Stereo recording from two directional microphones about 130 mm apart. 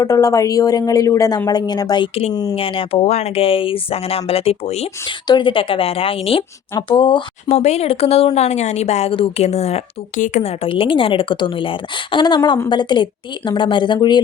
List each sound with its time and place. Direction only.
0.0 s a woman's voice: 25° left (ahead or behind)
2.6 s speech: 45° left (ahead or behind)
5.0 s a woman's voice: 40° left (ahead or behind)
7.4 s speech: 55° left (ahead or behind); by 10.4 s 75° left (ahead or behind)
10.4 s a woman's voice: 45° left (ahead or behind)